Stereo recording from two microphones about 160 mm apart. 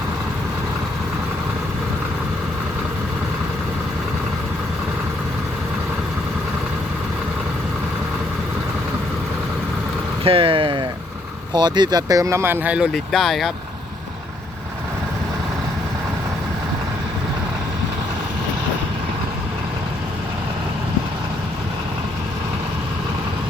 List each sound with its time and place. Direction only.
10.2 s speech: 35° right (ahead or behind); by 13.5 s centre (ahead or behind)